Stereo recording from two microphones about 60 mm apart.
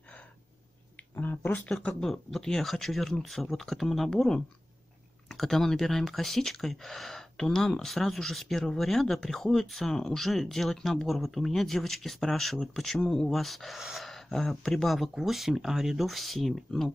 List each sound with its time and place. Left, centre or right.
1.1 s speech: left
1.7 s speech: centre